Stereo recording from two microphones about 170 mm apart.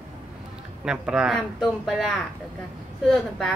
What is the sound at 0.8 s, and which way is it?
Speech, 5° right (ahead or behind).